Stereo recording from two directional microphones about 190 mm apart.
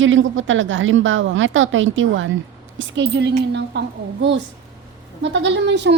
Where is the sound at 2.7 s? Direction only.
70° right (ahead or behind).